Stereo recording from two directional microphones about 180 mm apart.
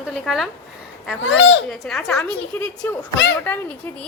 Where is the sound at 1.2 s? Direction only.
90° left.